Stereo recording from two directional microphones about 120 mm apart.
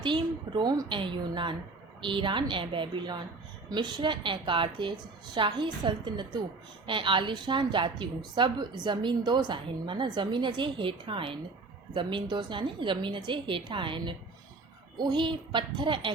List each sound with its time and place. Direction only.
0.0 s a woman's voice: 40° right (ahead or behind)